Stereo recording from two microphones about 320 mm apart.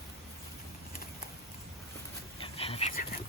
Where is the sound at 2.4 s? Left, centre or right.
Centre.